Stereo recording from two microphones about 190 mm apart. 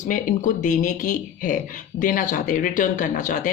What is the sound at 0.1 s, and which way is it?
Speech, 45° left (ahead or behind).